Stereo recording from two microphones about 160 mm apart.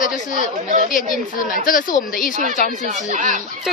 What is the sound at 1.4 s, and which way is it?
Speech, 60° left (ahead or behind).